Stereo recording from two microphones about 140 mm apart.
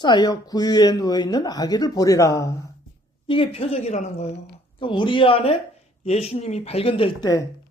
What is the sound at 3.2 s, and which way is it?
Speech, 40° left (ahead or behind).